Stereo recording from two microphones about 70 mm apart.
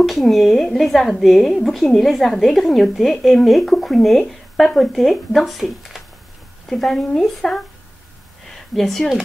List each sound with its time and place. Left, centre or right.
0.0 s a woman's voice: centre